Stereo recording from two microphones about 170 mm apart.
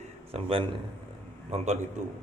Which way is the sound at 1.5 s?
40° right (ahead or behind).